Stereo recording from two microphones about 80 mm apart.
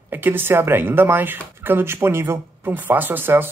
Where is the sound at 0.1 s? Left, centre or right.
Right.